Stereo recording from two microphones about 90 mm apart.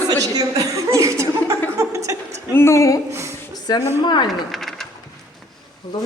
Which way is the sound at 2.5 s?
30° left (ahead or behind).